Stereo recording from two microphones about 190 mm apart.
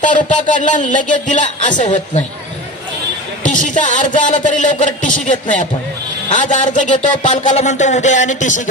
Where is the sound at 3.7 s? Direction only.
40° left (ahead or behind).